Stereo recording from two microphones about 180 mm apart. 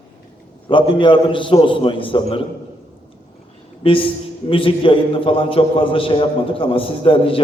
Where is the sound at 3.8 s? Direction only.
30° left (ahead or behind).